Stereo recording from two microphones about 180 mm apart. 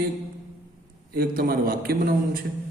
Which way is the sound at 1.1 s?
55° right (ahead or behind).